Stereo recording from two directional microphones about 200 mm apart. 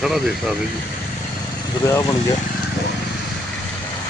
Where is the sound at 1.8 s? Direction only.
15° left (ahead or behind).